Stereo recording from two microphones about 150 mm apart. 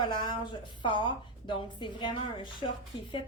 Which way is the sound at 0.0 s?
30° left (ahead or behind).